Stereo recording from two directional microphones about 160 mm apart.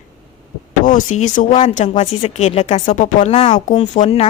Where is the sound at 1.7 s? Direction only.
45° left (ahead or behind).